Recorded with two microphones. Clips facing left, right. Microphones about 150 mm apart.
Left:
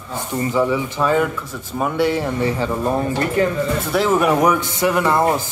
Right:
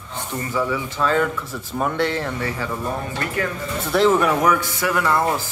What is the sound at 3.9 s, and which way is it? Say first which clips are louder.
A man's voice: even; 5° left (ahead or behind).